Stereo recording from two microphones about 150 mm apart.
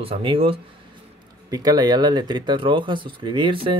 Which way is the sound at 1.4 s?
25° right (ahead or behind).